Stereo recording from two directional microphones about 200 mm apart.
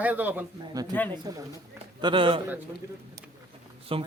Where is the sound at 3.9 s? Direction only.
25° right (ahead or behind).